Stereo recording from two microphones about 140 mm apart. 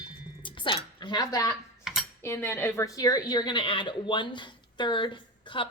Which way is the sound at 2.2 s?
15° left (ahead or behind).